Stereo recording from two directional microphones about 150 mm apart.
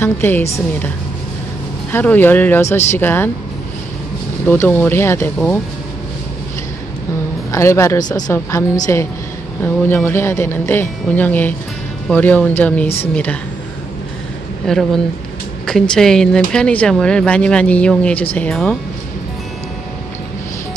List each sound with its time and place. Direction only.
0.0 s speech: 15° left (ahead or behind)
4.5 s speech: 15° left (ahead or behind)
7.5 s a woman's voice: 20° left (ahead or behind)
14.7 s speech: centre (ahead or behind)